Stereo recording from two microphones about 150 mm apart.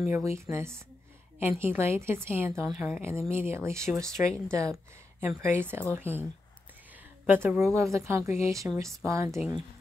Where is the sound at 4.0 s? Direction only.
5° left (ahead or behind).